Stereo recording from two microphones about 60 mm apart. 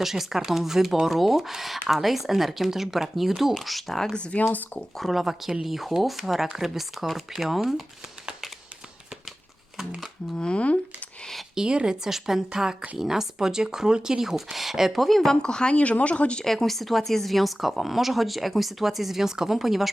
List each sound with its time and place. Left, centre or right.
0.0 s speech: centre
4.1 s speech: centre
4.9 s speech: centre
10.3 s speech: centre
11.5 s speech: centre
16.4 s speech: centre